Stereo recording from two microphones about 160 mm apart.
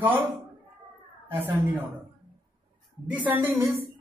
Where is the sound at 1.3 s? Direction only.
15° right (ahead or behind).